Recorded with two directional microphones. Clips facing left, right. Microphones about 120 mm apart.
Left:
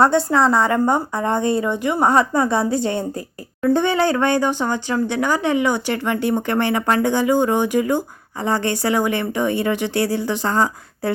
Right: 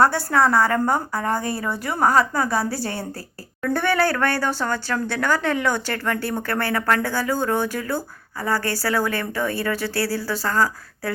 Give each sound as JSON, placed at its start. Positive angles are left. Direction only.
{"t": 0.0, "sound": "a woman's voice", "side_deg": 20}